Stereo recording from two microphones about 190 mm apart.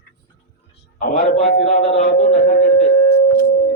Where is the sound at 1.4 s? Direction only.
50° left (ahead or behind).